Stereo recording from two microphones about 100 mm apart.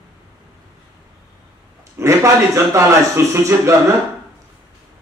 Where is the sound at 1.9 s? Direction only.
30° right (ahead or behind).